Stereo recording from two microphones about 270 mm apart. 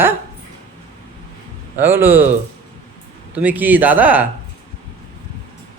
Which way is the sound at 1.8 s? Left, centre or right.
Centre.